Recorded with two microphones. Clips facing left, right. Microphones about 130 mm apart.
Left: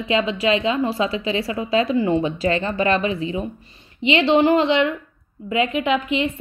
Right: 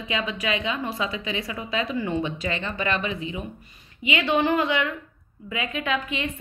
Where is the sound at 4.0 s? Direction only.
25° left (ahead or behind).